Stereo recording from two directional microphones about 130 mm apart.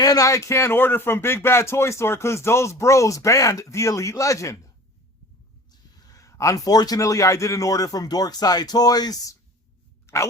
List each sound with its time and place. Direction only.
0.0 s speech: 25° left (ahead or behind)
5.7 s speech: 30° left (ahead or behind)
10.1 s a sound: 20° left (ahead or behind)